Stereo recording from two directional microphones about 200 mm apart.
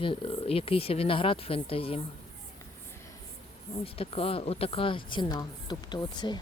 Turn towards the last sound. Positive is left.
turn(degrees=20)  # may be behind; listen again after turning